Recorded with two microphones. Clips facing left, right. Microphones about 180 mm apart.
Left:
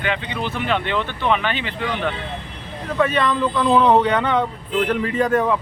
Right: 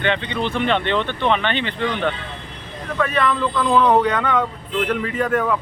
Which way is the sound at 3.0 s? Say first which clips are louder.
Left 1 dB; 25° left (ahead or behind).